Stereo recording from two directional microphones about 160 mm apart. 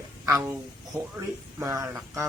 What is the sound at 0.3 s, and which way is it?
A woman's voice, 15° right (ahead or behind).